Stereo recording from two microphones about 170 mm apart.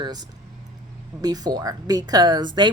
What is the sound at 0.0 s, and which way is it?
A woman's voice, 25° right (ahead or behind).